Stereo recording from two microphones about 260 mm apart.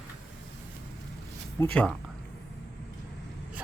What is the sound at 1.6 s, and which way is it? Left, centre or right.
Speech, centre.